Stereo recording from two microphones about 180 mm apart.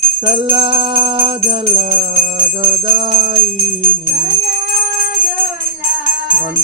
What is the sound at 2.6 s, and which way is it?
Mantra, 25° right (ahead or behind).